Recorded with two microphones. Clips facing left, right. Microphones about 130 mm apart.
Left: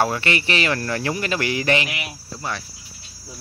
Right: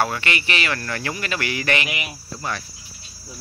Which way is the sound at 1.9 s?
10° right (ahead or behind).